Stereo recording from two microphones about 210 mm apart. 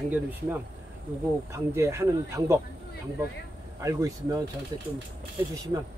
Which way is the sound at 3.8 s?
15° right (ahead or behind).